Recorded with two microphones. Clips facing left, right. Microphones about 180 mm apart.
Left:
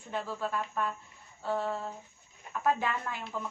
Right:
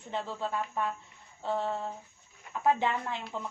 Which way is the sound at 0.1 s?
20° right (ahead or behind).